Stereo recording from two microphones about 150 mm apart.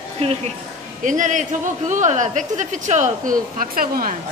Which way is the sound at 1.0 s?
60° right (ahead or behind).